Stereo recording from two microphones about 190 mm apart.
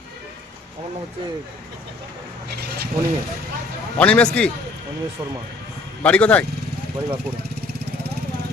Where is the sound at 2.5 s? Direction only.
55° right (ahead or behind).